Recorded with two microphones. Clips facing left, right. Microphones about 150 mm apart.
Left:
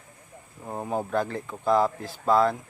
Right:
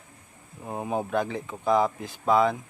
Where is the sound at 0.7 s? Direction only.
10° right (ahead or behind).